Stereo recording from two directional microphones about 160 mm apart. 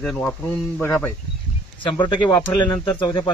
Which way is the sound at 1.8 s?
30° left (ahead or behind).